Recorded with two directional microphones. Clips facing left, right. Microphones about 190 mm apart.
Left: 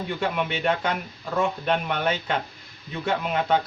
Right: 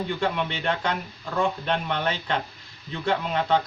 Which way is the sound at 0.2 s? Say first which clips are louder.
Left 1 dB; 5° left (ahead or behind).